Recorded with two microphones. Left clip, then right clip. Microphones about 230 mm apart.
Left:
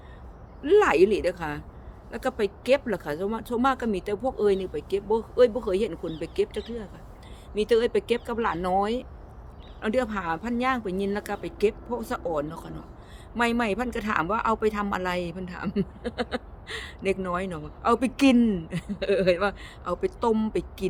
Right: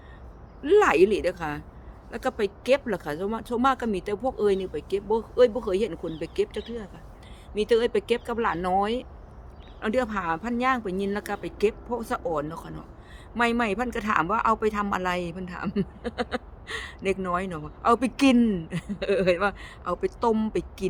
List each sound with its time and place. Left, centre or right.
0.6 s speech: centre